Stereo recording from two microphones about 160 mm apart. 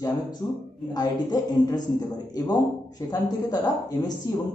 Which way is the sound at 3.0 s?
25° left (ahead or behind).